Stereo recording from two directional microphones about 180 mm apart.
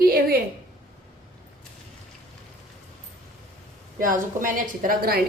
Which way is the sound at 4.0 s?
50° right (ahead or behind).